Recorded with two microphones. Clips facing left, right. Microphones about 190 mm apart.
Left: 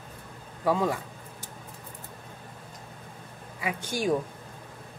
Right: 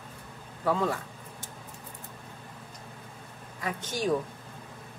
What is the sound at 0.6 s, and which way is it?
Speech, 15° left (ahead or behind).